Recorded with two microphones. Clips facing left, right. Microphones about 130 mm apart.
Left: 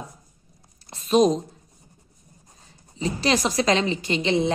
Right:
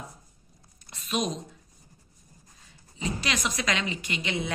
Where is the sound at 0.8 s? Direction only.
35° left (ahead or behind).